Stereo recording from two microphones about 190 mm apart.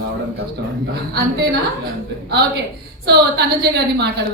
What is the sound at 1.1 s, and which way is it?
A woman's voice, 55° right (ahead or behind).